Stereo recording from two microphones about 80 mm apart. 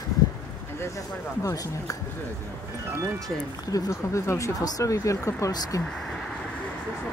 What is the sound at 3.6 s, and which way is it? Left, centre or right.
Speech, left.